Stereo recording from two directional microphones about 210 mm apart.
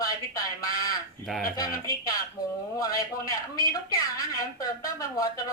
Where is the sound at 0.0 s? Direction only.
15° left (ahead or behind).